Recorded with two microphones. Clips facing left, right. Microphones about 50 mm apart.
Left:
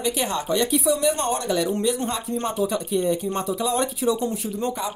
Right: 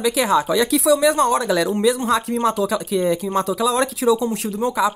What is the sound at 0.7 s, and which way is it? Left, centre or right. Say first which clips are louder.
Speech: right 5 dB; right.